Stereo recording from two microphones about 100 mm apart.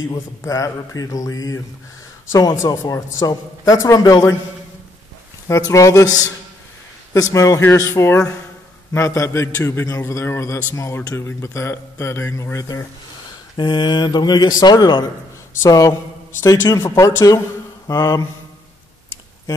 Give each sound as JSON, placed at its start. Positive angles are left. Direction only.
{"t": 0.4, "sound": "speech", "side_deg": 30}
{"t": 5.5, "sound": "speech", "side_deg": 30}
{"t": 7.2, "sound": "a man's voice", "side_deg": 35}
{"t": 13.6, "sound": "speech", "side_deg": 50}
{"t": 15.6, "sound": "speech", "side_deg": 35}